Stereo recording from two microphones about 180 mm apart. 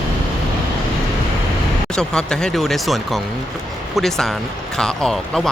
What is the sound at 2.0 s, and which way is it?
Speech, 5° left (ahead or behind).